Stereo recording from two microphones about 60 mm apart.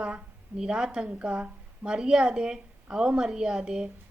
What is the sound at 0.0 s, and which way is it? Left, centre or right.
A woman's voice, centre.